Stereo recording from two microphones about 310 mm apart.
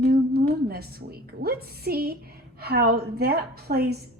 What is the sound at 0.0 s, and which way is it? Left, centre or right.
A woman's voice, right.